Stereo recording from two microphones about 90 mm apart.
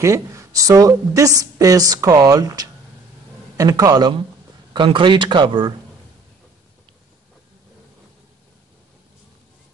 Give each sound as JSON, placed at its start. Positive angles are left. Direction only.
{"t": 0.0, "sound": "a woman's voice", "side_deg": -35}
{"t": 4.7, "sound": "speech", "side_deg": -65}